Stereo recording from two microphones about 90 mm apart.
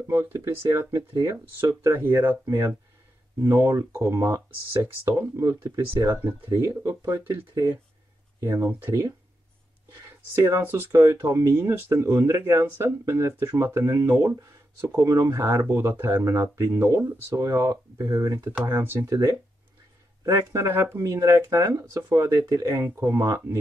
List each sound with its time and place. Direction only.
0.0 s speech: 30° right (ahead or behind)
10.3 s speech: 30° right (ahead or behind)
18.7 s speech: 25° right (ahead or behind)
19.0 s speech: 40° right (ahead or behind)
20.5 s speech: 30° right (ahead or behind)